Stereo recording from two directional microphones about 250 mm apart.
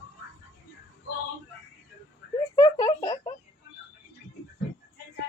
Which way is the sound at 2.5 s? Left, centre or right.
Centre.